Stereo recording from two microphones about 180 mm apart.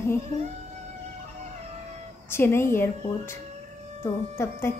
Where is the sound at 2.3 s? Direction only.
15° left (ahead or behind).